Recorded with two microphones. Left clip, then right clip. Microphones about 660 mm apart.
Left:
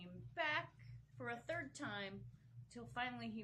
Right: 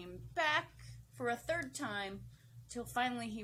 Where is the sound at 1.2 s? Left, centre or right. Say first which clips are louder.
Right 9 dB; right.